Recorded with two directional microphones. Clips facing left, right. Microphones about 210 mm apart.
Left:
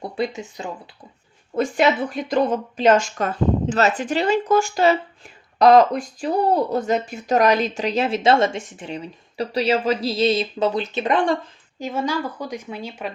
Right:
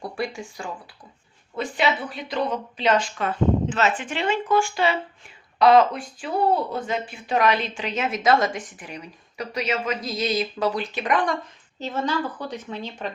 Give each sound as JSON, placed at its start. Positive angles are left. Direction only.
{"t": 0.0, "sound": "speech", "side_deg": 20}
{"t": 1.5, "sound": "a woman's voice", "side_deg": 45}
{"t": 11.8, "sound": "speech", "side_deg": 10}